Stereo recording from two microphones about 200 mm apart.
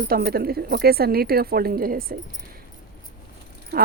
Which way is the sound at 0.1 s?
50° right (ahead or behind).